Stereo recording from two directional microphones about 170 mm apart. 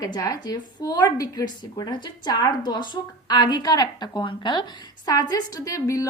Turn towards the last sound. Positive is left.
turn(degrees=20)  # may be behind; listen again after turning